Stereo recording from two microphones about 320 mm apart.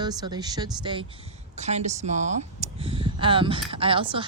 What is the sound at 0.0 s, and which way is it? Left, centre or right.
Speech, centre.